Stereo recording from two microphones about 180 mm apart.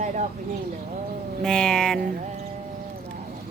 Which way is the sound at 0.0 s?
40° right (ahead or behind).